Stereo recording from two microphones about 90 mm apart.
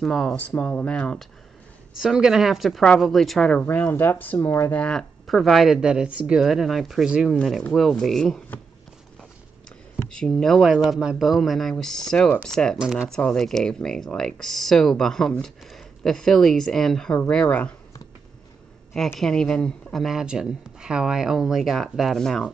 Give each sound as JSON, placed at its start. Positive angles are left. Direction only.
{"t": 0.0, "sound": "speech", "side_deg": 5}
{"t": 2.0, "sound": "speech", "side_deg": -5}
{"t": 3.6, "sound": "speech", "side_deg": 20}
{"t": 5.2, "sound": "speech", "side_deg": 0}
{"t": 7.3, "sound": "speech", "side_deg": 5}
{"t": 10.1, "sound": "speech", "side_deg": 5}
{"t": 12.7, "sound": "speech", "side_deg": -5}
{"t": 13.1, "sound": "speech", "side_deg": 10}
{"t": 19.1, "sound": "speech", "side_deg": 5}